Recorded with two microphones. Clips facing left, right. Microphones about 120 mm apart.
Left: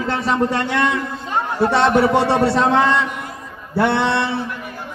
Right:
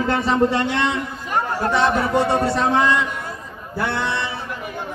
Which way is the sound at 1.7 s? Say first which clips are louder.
Left 4 dB; 70° left (ahead or behind).